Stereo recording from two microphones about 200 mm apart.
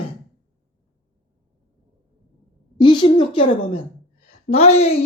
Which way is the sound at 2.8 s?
25° left (ahead or behind).